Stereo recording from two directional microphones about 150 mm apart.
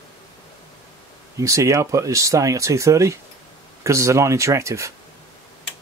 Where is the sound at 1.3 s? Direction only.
20° right (ahead or behind).